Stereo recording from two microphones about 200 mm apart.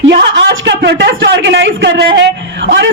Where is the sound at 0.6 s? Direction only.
60° right (ahead or behind).